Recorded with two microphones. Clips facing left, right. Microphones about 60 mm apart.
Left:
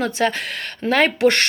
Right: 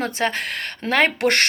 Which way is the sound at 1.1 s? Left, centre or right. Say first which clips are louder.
Left 3 dB; right.